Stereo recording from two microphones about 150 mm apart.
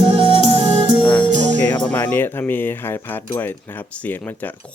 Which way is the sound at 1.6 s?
10° left (ahead or behind).